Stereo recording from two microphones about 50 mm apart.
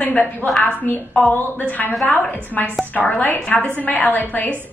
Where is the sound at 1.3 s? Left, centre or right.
Left.